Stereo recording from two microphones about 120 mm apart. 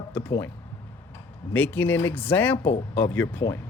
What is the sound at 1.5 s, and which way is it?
Speech, 15° left (ahead or behind).